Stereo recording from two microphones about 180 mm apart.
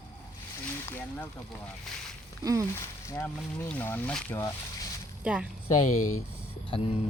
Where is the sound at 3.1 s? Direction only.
10° left (ahead or behind).